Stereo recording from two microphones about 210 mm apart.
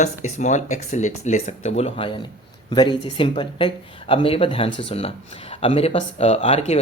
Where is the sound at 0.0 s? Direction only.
35° left (ahead or behind).